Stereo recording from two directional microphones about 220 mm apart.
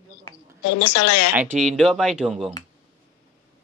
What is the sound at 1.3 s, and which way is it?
Speech, 5° right (ahead or behind).